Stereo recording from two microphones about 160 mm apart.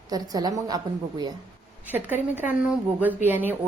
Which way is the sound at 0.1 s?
25° right (ahead or behind).